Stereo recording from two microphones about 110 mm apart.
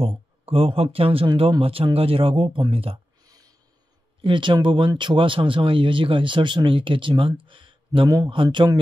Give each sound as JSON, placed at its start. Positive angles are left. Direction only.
{"t": 0.0, "sound": "speech", "side_deg": -55}
{"t": 3.2, "sound": "a sound", "side_deg": -35}
{"t": 4.2, "sound": "speech", "side_deg": -50}